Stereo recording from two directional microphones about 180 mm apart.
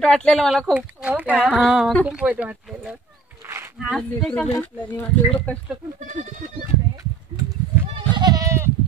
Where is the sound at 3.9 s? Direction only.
5° left (ahead or behind).